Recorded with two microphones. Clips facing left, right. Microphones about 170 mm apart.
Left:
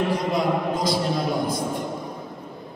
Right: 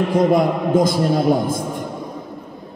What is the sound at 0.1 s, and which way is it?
Speech, 50° right (ahead or behind).